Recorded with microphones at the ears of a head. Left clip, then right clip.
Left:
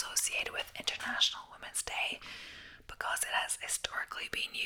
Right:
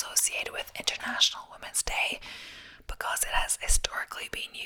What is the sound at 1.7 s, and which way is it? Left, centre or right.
Speech, right.